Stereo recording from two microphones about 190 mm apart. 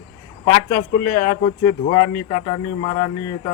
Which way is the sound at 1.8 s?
30° left (ahead or behind).